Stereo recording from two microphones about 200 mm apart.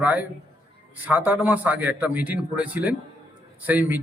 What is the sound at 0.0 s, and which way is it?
A man's voice, 10° right (ahead or behind).